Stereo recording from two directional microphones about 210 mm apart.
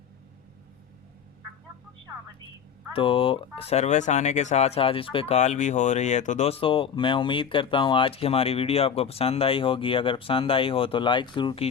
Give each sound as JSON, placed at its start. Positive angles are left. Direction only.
{"t": 2.9, "sound": "speech", "side_deg": 25}